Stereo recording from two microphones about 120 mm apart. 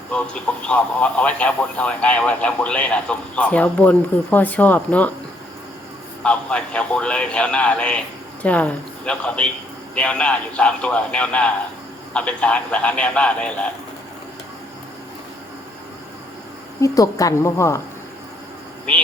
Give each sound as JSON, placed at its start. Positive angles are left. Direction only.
{"t": 0.7, "sound": "a man's voice", "side_deg": 10}
{"t": 6.2, "sound": "a man's voice", "side_deg": 10}
{"t": 16.8, "sound": "a woman's voice", "side_deg": 30}